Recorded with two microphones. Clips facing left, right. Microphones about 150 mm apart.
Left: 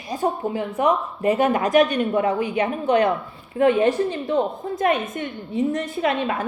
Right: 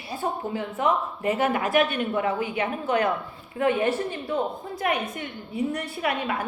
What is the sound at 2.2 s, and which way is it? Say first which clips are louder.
Speech: left 4 dB; 35° left (ahead or behind).